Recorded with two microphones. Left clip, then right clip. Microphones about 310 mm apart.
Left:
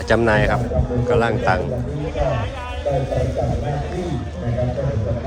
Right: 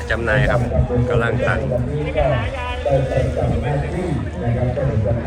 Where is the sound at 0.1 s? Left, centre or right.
Left.